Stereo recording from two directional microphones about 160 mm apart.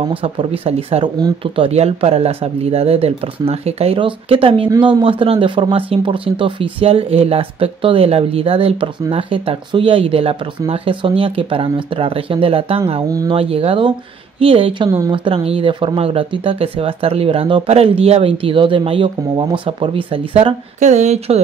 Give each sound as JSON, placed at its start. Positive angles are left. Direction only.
{"t": 0.1, "sound": "speech", "side_deg": -35}
{"t": 15.1, "sound": "speech", "side_deg": -35}